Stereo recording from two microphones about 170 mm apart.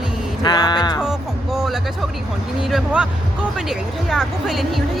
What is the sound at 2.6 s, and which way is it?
Speech, 5° right (ahead or behind).